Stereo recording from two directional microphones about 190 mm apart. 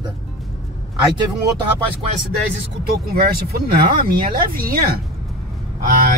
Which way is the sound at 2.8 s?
55° right (ahead or behind).